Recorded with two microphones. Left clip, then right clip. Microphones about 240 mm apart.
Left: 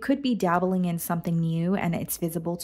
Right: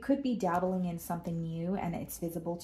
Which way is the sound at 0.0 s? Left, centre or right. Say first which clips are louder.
Left 6 dB; left.